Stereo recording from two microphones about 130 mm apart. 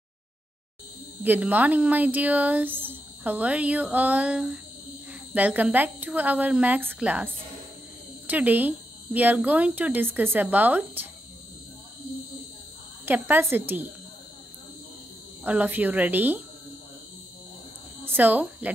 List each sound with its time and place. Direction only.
1.2 s speech: 15° right (ahead or behind)
8.3 s speech: 10° right (ahead or behind)
13.0 s speech: 15° right (ahead or behind)
15.4 s speech: 10° right (ahead or behind)
18.0 s speech: 15° right (ahead or behind)